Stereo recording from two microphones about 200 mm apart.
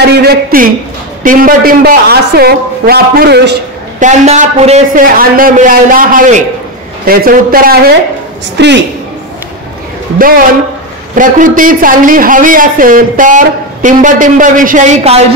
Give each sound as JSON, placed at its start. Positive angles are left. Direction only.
{"t": 0.0, "sound": "a man's voice", "side_deg": -50}
{"t": 4.0, "sound": "a man's voice", "side_deg": -40}
{"t": 8.5, "sound": "a woman's voice", "side_deg": -60}
{"t": 10.1, "sound": "a man's voice", "side_deg": -45}